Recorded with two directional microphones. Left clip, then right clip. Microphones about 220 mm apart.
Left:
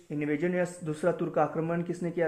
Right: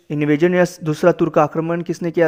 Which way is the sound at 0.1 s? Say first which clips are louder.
Right 14 dB; 50° right (ahead or behind).